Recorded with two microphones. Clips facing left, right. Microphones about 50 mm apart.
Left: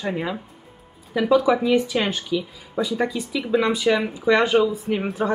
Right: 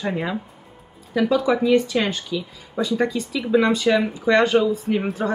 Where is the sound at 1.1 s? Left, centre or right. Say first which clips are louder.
Left 1 dB; centre.